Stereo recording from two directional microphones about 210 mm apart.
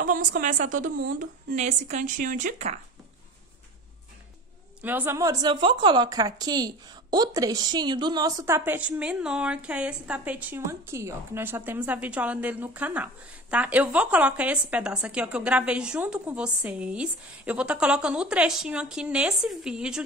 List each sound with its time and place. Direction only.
0.0 s a woman's voice: 40° right (ahead or behind)
4.8 s a woman's voice: 10° right (ahead or behind)